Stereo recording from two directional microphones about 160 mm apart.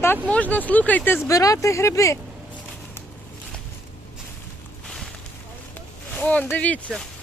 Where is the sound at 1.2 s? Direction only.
20° left (ahead or behind).